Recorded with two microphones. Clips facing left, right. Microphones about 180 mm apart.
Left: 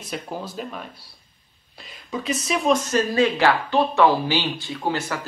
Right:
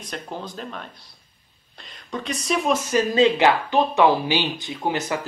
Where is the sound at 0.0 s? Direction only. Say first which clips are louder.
Left 2 dB; 5° left (ahead or behind).